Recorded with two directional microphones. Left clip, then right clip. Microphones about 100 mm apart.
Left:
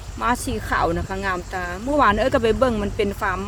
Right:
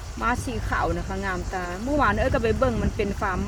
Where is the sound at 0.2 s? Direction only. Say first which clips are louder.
Left 4 dB; 40° left (ahead or behind).